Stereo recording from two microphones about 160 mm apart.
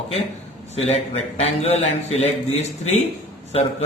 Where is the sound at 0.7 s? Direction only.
40° left (ahead or behind).